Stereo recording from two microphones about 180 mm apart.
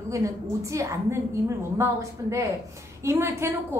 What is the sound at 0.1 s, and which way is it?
A woman's voice, 15° right (ahead or behind).